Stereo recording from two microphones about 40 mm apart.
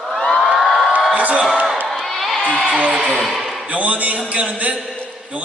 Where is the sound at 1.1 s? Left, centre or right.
Right.